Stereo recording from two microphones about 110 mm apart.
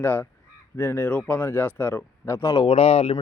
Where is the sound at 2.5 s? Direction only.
45° left (ahead or behind).